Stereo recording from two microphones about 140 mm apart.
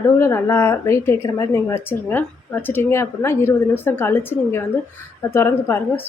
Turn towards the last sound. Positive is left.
turn(degrees=20)  # may be behind; listen again after turning